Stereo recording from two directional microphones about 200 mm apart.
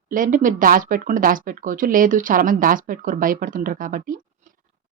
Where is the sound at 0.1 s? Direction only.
40° right (ahead or behind).